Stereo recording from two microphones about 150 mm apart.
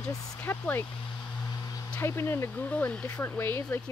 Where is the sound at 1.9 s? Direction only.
15° left (ahead or behind).